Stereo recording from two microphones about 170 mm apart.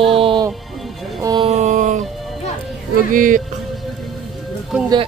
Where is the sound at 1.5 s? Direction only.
45° right (ahead or behind).